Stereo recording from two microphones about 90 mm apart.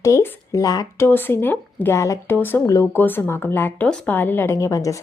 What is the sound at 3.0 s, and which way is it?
A woman's voice, 25° left (ahead or behind).